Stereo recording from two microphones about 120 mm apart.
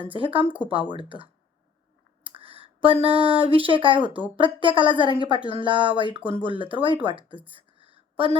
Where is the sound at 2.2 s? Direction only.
50° right (ahead or behind).